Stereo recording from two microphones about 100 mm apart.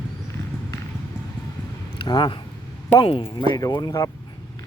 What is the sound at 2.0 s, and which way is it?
Speech, 45° left (ahead or behind).